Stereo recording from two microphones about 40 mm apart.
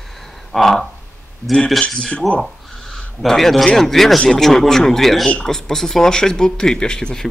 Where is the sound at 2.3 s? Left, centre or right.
Centre.